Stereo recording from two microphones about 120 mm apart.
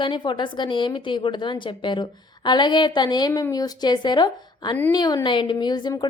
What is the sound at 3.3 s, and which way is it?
A woman's voice, 25° left (ahead or behind).